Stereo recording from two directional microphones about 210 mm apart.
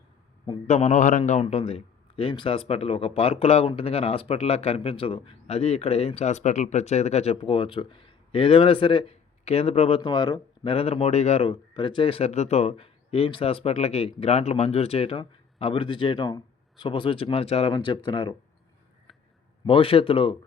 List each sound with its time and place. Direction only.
0.4 s a man's voice: 25° left (ahead or behind)
19.6 s a man's voice: 25° left (ahead or behind)